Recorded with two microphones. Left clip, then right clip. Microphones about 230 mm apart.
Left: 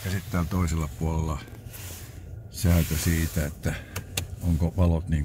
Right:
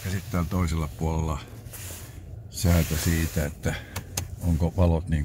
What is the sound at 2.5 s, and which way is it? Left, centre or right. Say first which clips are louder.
Snake: right 2 dB; centre.